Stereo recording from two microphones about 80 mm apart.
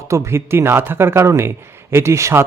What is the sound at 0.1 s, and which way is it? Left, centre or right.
A man's voice, right.